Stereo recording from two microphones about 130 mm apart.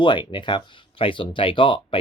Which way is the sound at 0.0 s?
40° left (ahead or behind).